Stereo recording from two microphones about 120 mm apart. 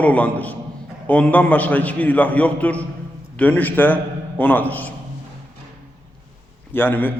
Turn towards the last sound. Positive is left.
turn(degrees=15)  # may be behind; listen again after turning